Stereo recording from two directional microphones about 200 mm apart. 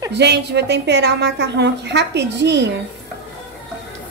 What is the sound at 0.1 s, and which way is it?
A woman's voice, 55° right (ahead or behind).